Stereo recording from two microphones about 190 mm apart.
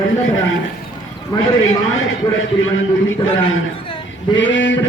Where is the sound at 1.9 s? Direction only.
90° left.